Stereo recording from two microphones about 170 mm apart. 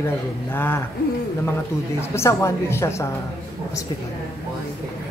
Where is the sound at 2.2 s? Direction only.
15° left (ahead or behind).